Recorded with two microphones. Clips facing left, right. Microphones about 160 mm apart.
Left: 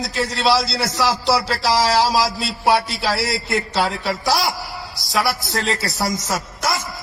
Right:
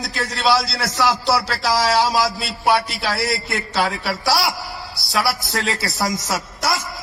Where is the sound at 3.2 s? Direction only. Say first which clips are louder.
Left 1 dB; 20° left (ahead or behind).